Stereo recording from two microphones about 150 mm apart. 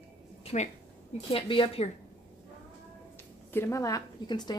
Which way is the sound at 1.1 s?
35° left (ahead or behind).